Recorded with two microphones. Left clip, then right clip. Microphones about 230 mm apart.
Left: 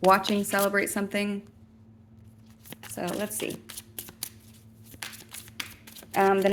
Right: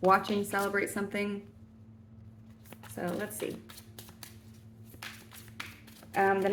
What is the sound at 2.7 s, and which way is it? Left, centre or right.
Shuffling cards, left.